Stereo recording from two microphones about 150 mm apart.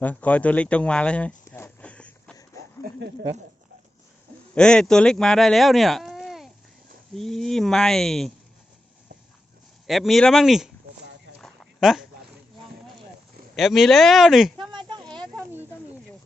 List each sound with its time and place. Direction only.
0.0 s speech: 10° left (ahead or behind)
4.5 s speech: 5° left (ahead or behind)
9.8 s speech: centre (ahead or behind)
11.3 s a sound: centre (ahead or behind)
13.6 s speech: centre (ahead or behind)
14.6 s a sound: 30° right (ahead or behind)